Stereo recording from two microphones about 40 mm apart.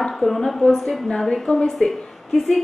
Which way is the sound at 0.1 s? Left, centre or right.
Centre.